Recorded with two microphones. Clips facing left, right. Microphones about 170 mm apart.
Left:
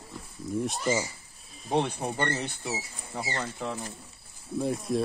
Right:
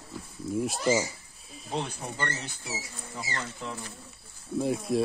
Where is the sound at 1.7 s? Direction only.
65° left (ahead or behind).